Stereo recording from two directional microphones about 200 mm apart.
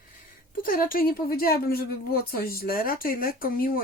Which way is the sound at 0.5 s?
45° left (ahead or behind).